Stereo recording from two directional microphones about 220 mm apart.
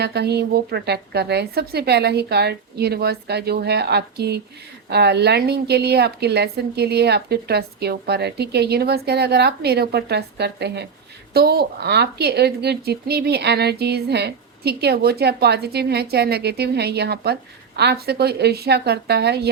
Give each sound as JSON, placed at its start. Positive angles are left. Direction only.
{"t": 0.0, "sound": "speech", "side_deg": -45}